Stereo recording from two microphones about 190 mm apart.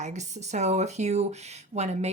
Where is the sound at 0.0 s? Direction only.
40° right (ahead or behind).